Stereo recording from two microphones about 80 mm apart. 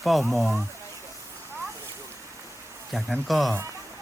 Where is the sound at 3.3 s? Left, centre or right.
Centre.